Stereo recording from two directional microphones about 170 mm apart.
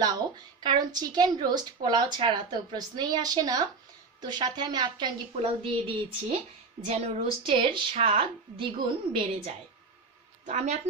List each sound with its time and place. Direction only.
0.7 s a woman's voice: 25° right (ahead or behind)
10.4 s a woman's voice: 45° right (ahead or behind)